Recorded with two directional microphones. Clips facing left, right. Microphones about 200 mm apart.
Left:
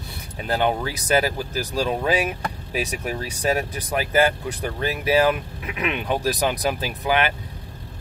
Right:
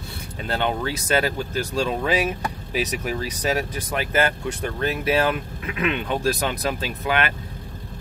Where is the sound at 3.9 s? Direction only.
10° left (ahead or behind).